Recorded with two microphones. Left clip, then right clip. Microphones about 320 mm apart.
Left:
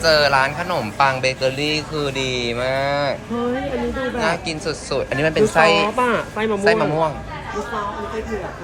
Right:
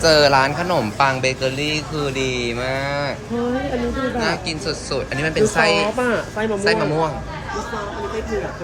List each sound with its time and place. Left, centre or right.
0.0 s speech: centre
4.2 s speech: centre
5.8 s speech: centre
6.7 s speech: centre